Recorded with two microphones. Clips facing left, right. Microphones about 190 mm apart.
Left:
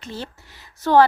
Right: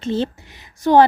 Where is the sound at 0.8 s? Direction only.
15° right (ahead or behind).